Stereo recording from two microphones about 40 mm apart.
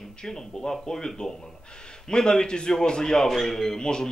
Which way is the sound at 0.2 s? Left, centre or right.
Centre.